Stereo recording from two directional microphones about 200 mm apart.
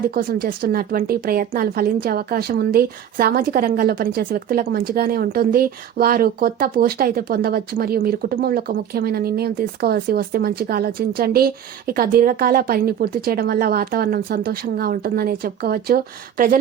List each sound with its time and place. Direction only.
0.1 s a woman's voice: 50° right (ahead or behind)